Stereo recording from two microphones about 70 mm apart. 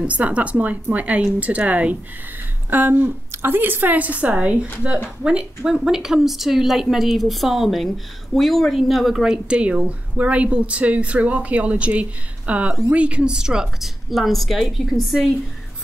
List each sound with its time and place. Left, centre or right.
0.0 s a woman's voice: centre